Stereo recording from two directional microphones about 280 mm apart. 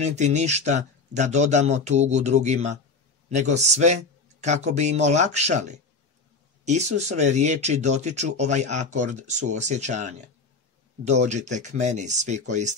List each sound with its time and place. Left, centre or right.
0.0 s speech: right